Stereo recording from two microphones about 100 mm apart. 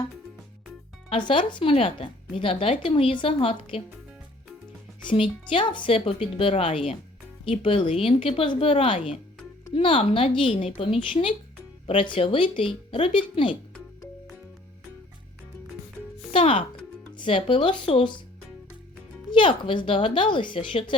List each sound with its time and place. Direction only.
1.1 s speech: 55° left (ahead or behind)
1.7 s speech: 70° left (ahead or behind)
5.0 s speech: 60° left (ahead or behind)
7.4 s speech: 65° left (ahead or behind)
16.3 s speech: 65° left (ahead or behind)
19.3 s speech: 60° left (ahead or behind)